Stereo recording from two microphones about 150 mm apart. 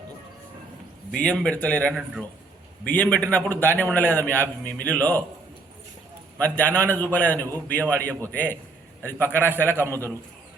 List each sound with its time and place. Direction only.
1.1 s a man's voice: 5° left (ahead or behind)
6.4 s a man's voice: 10° left (ahead or behind)